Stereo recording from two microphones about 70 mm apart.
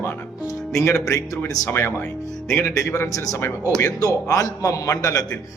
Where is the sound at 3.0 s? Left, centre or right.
Left.